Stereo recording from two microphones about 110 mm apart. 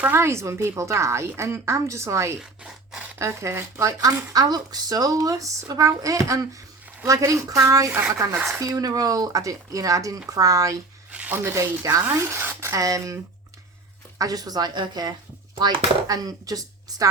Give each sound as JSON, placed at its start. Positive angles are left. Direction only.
{"t": 0.0, "sound": "speech", "side_deg": -20}
{"t": 2.4, "sound": "zipper", "side_deg": -5}
{"t": 3.2, "sound": "speech", "side_deg": -25}
{"t": 11.1, "sound": "speech", "side_deg": -15}
{"t": 12.7, "sound": "speech", "side_deg": -30}
{"t": 14.2, "sound": "speech", "side_deg": -35}